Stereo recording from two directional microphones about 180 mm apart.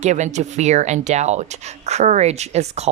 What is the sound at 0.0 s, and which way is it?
Speech, 40° right (ahead or behind).